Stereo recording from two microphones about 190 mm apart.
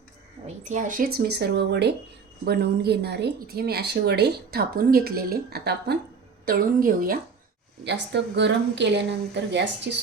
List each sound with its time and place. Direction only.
0.4 s speech: 40° right (ahead or behind); by 6.0 s 60° right (ahead or behind)
6.4 s speech: 50° right (ahead or behind)
7.9 s speech: 65° right (ahead or behind)